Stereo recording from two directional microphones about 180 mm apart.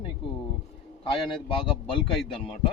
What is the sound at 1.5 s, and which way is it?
Speech, 30° left (ahead or behind).